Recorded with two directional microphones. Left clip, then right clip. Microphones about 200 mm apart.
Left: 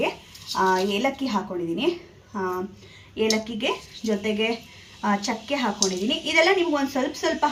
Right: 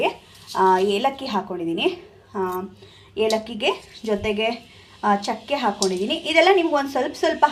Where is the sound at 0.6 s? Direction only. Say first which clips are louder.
Right 4 dB; 35° right (ahead or behind).